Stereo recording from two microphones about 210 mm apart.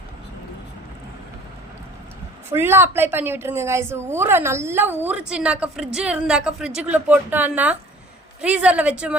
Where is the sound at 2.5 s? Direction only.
10° right (ahead or behind).